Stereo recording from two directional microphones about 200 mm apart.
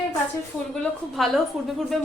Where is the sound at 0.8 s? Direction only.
Centre (ahead or behind).